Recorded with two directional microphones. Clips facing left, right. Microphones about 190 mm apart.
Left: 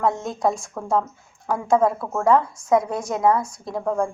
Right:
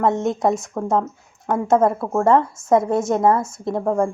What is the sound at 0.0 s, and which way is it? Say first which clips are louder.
A woman's voice: right 3 dB; 20° right (ahead or behind).